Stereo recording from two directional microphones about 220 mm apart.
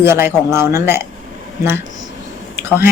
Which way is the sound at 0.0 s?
10° right (ahead or behind).